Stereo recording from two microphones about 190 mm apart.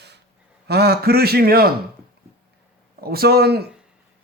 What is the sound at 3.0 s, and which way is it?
Speech, 55° right (ahead or behind).